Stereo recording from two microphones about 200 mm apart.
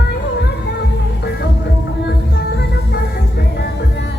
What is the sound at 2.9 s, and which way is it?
Music, 55° left (ahead or behind).